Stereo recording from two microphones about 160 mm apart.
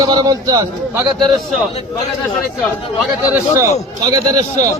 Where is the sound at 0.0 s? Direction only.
25° right (ahead or behind).